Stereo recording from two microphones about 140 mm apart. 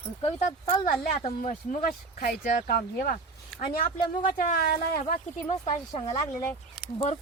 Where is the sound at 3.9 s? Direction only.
80° left.